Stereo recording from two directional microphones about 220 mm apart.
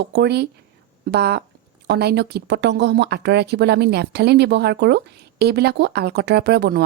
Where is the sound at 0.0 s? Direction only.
50° right (ahead or behind).